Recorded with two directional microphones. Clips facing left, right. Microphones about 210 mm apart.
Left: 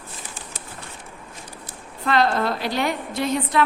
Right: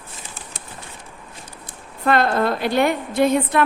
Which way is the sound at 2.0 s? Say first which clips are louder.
Right 2 dB; 55° right (ahead or behind).